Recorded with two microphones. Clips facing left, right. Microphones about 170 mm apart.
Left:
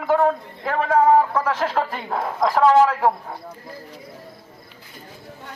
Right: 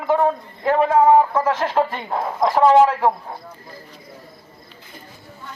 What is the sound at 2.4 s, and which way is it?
Speech, 15° right (ahead or behind).